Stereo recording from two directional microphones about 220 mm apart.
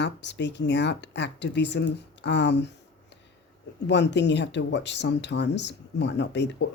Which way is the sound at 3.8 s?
50° left (ahead or behind).